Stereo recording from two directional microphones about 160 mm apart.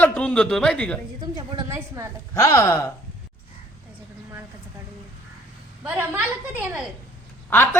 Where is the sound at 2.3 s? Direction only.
20° left (ahead or behind).